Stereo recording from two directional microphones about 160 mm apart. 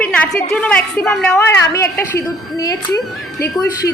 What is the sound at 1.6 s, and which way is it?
A woman's voice, 20° left (ahead or behind).